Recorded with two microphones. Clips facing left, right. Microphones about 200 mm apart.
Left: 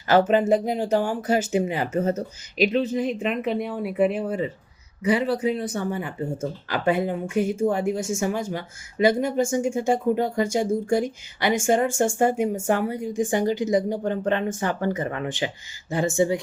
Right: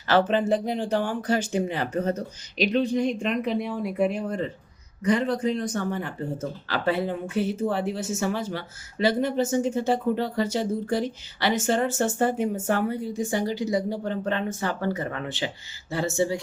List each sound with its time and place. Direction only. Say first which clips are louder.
0.1 s speech: left 3 dB; 10° left (ahead or behind)